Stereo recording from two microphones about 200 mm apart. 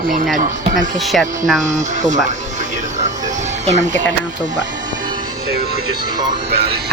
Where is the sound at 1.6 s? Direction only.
40° right (ahead or behind).